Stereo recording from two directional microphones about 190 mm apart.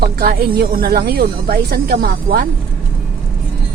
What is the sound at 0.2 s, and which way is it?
Speech, 55° right (ahead or behind).